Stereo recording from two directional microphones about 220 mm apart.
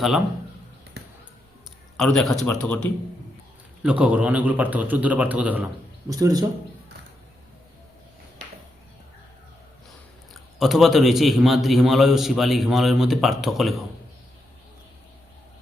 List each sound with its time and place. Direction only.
2.0 s a man's voice: centre (ahead or behind)
3.8 s a man's voice: 5° right (ahead or behind)
10.3 s a man's voice: centre (ahead or behind)